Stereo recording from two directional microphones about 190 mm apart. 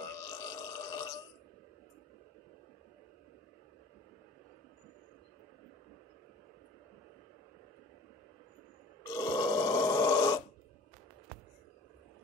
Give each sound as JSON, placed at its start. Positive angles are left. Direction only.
{"t": 0.0, "sound": "burping", "side_deg": 20}
{"t": 9.1, "sound": "grunt", "side_deg": 20}